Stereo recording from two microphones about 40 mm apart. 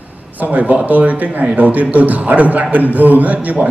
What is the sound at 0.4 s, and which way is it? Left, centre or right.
A man's voice, right.